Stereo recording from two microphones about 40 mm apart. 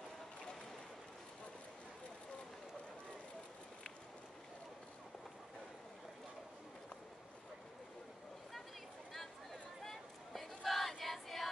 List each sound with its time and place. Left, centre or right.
9.1 s crowd: centre